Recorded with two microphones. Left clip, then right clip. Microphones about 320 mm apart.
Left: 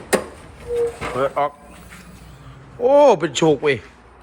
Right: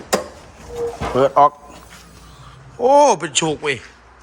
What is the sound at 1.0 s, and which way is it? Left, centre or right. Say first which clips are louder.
Speech: right 7 dB; right.